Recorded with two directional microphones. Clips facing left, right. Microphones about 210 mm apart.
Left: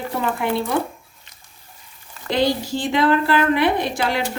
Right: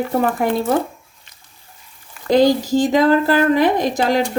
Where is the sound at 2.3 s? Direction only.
40° right (ahead or behind).